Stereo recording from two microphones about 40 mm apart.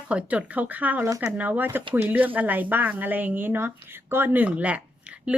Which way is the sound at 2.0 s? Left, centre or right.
Right.